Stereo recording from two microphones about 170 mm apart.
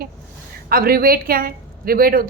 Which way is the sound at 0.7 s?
60° right (ahead or behind).